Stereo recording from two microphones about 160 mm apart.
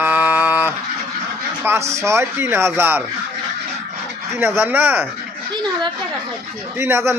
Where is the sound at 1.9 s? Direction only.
15° right (ahead or behind).